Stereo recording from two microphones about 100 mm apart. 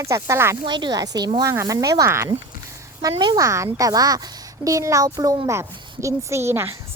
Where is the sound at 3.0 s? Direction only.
40° right (ahead or behind).